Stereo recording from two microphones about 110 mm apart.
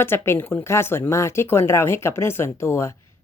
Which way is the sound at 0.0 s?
20° left (ahead or behind).